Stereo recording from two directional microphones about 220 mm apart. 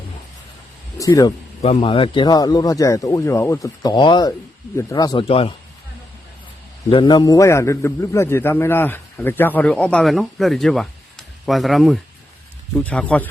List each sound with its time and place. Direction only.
0.9 s a man's voice: 15° left (ahead or behind)
1.6 s a man's voice: 25° left (ahead or behind)
6.9 s a man's voice: 20° left (ahead or behind); by 13.2 s 5° left (ahead or behind)